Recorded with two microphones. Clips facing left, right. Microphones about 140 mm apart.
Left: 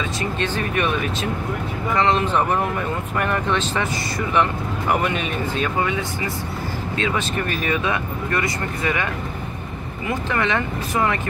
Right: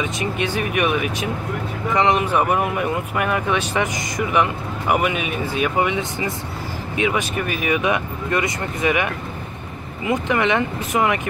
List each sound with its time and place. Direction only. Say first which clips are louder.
0.0 s speech: right 1 dB; 15° right (ahead or behind)